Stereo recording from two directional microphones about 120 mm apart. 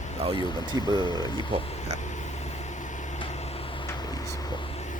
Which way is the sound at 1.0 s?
35° left (ahead or behind).